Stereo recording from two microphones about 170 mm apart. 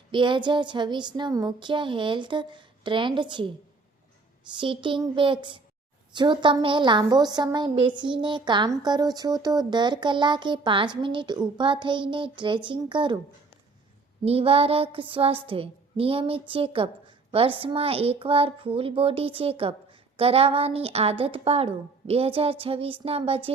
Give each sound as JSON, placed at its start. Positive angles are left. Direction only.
{"t": 0.1, "sound": "a woman's voice", "side_deg": -30}
{"t": 14.3, "sound": "a woman's voice", "side_deg": -35}